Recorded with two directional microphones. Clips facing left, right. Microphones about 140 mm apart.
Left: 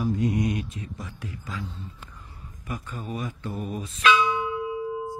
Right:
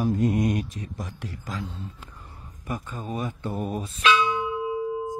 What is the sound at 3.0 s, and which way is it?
Speech, 30° right (ahead or behind).